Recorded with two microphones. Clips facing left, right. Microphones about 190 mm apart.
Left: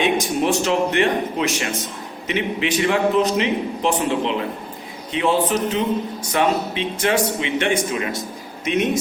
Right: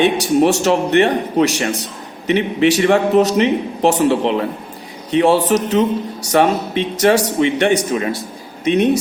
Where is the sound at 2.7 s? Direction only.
45° right (ahead or behind).